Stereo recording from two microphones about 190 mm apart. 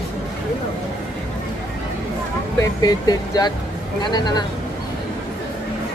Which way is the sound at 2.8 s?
20° left (ahead or behind).